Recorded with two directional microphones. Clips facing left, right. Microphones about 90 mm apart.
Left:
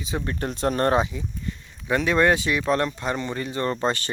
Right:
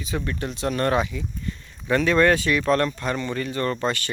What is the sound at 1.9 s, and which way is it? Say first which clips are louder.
Speech: right 1 dB; 15° left (ahead or behind).